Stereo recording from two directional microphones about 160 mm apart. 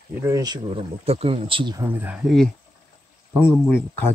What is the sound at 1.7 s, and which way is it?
Speech, 10° right (ahead or behind).